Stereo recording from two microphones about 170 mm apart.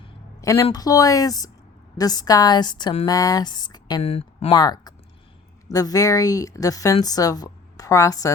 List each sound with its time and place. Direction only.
0.4 s speech: 20° left (ahead or behind)
4.0 s speech: 40° left (ahead or behind)
4.5 s speech: 25° left (ahead or behind)